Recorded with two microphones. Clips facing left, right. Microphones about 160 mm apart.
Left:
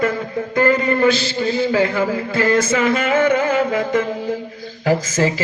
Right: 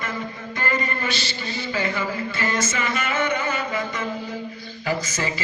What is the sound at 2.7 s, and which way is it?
A man's voice, 90° left.